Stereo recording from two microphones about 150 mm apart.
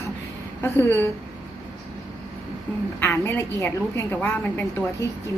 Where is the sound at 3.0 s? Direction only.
15° left (ahead or behind).